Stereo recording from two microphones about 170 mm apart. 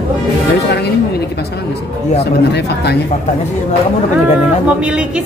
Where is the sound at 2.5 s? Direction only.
75° left (ahead or behind).